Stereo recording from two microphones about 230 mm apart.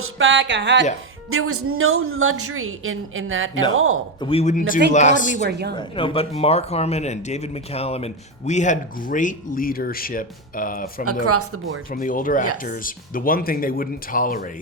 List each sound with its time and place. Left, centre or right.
0.0 s speech: right
1.3 s a woman's voice: right
4.2 s speech: left
5.5 s speech: right
5.7 s speech: left
11.3 s speech: right
11.9 s speech: left